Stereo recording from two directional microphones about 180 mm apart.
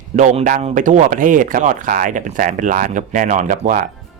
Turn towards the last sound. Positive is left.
turn(degrees=-50)  # may be behind; listen again after turning